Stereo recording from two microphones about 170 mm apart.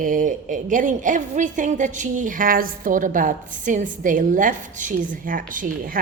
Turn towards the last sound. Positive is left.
turn(degrees=-55)  # may be behind; listen again after turning